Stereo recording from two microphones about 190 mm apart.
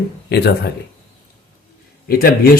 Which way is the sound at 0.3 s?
60° left (ahead or behind).